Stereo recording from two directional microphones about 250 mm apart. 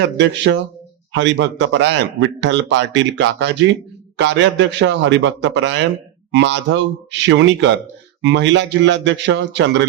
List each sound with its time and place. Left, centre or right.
0.2 s a man's voice: right